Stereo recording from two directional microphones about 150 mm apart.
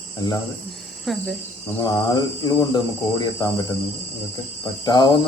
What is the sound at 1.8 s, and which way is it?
Speech, 25° left (ahead or behind).